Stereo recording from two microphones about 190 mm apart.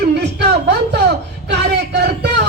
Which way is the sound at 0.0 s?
60° right (ahead or behind).